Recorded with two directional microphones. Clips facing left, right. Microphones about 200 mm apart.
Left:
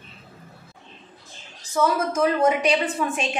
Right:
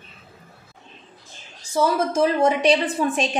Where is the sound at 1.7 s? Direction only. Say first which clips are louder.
Right 2 dB; 30° right (ahead or behind).